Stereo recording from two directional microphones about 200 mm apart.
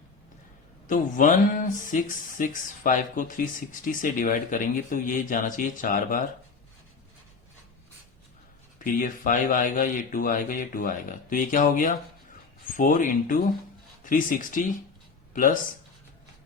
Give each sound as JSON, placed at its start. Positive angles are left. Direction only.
{"t": 0.9, "sound": "speech", "side_deg": 40}
{"t": 8.8, "sound": "speech", "side_deg": 40}